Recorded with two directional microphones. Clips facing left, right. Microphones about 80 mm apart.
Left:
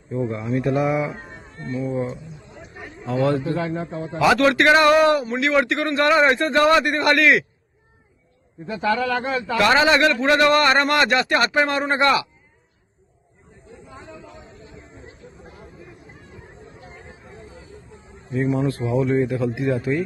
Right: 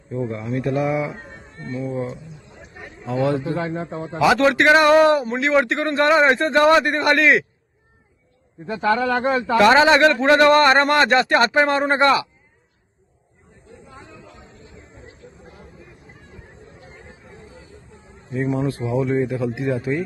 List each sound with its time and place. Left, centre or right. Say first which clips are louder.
0.3 s speech: left 2 dB; centre
3.1 s a man's voice: even; centre
8.8 s a man's voice: right 3 dB; right
9.6 s a man's voice: right 3 dB; right
18.6 s a man's voice: left 1 dB; centre